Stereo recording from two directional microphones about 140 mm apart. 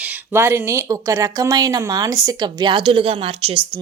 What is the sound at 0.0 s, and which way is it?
Speech, 15° right (ahead or behind).